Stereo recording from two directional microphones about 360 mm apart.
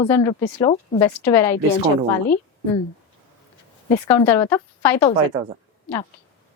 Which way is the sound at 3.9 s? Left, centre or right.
Centre.